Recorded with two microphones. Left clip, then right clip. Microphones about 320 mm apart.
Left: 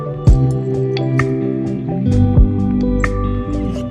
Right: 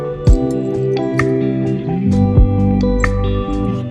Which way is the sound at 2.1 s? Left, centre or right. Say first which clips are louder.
Right 1 dB; centre.